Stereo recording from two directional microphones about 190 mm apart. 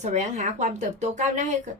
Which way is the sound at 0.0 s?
40° right (ahead or behind).